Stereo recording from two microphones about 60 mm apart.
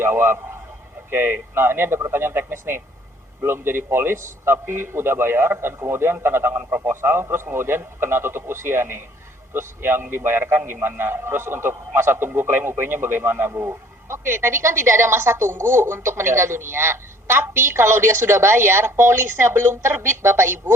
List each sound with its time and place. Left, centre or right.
0.0 s a woman's voice: right
13.5 s a woman's voice: right